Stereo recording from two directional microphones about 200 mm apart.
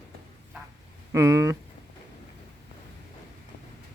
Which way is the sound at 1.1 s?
15° right (ahead or behind).